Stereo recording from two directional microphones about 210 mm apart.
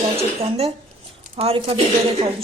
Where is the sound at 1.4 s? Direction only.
25° right (ahead or behind).